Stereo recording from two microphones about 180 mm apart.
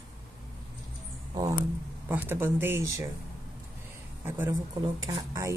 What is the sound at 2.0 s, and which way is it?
Speech, 10° right (ahead or behind).